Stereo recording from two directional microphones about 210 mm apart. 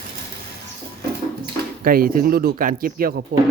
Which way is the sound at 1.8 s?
45° right (ahead or behind).